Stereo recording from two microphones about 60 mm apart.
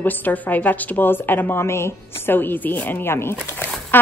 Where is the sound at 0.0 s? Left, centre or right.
Left.